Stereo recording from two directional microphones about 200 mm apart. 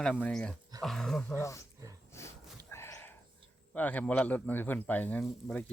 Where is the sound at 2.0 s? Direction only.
15° left (ahead or behind).